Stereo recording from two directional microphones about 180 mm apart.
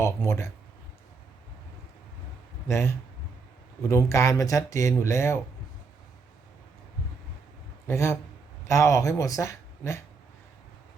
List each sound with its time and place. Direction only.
0.0 s speech: 15° left (ahead or behind)
2.6 s speech: 15° left (ahead or behind)
7.9 s speech: 15° left (ahead or behind)